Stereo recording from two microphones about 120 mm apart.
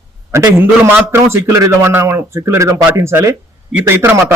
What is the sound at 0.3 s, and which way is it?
A man's voice, 25° right (ahead or behind).